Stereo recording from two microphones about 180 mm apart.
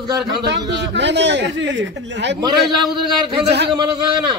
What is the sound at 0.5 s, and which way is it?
A man's voice, 80° right.